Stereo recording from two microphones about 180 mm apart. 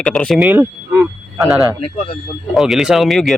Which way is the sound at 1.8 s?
30° left (ahead or behind).